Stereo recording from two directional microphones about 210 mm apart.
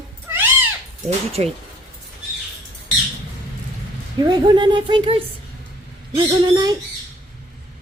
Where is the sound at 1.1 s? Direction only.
30° right (ahead or behind).